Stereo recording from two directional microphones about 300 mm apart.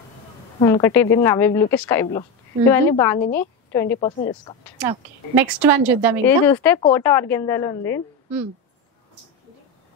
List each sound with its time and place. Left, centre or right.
0.6 s a woman's voice: centre
4.8 s speech: centre
6.2 s a woman's voice: centre